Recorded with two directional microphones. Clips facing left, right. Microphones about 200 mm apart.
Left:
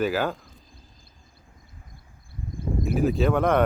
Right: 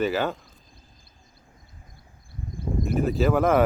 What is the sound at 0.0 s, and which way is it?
Speech, 10° left (ahead or behind).